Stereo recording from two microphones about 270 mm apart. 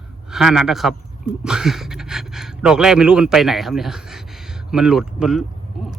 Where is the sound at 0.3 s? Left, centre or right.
Centre.